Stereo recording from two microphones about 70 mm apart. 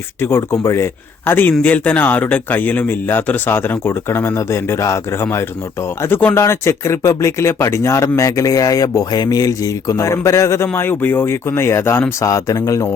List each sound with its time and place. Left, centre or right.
0.2 s a man's voice: left
6.0 s a man's voice: left
6.4 s speech: left
10.8 s a man's voice: left
12.2 s speech: left